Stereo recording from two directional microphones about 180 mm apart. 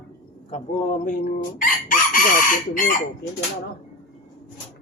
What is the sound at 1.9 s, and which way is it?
Chicken, 50° left (ahead or behind).